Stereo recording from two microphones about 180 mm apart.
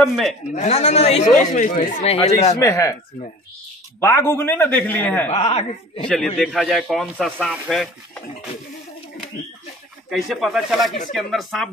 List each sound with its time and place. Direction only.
0.0 s a man's voice: centre (ahead or behind)
0.5 s speech: 35° left (ahead or behind)
2.6 s a man's voice: 15° left (ahead or behind)
4.0 s a man's voice: 15° left (ahead or behind)
5.3 s speech: 35° left (ahead or behind)
6.0 s a man's voice: 5° left (ahead or behind)
10.0 s a man's voice: centre (ahead or behind)